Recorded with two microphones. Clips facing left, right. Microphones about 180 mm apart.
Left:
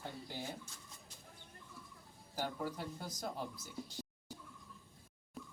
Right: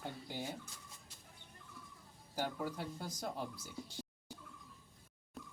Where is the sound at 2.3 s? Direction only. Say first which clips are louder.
Right 1 dB; 10° right (ahead or behind).